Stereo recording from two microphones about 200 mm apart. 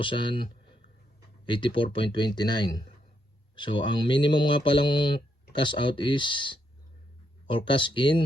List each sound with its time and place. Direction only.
0.0 s speech: 25° left (ahead or behind)